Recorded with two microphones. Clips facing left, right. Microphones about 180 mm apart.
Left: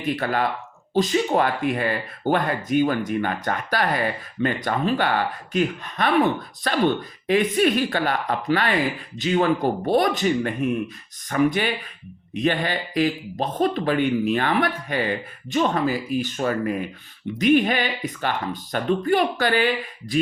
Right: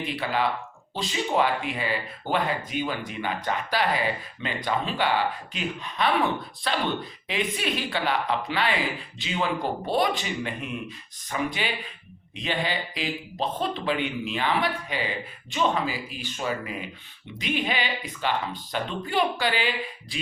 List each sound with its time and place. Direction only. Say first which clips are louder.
0.2 s speech: left 3 dB; 50° left (ahead or behind)